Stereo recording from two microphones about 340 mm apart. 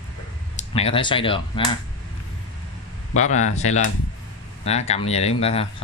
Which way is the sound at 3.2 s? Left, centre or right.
Left.